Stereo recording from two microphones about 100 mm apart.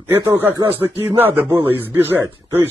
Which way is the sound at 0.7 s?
20° right (ahead or behind).